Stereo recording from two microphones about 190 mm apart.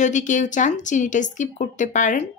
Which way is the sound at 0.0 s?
40° left (ahead or behind).